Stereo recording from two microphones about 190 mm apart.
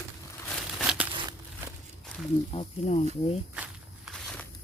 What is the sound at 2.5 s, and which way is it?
Speech, 35° left (ahead or behind).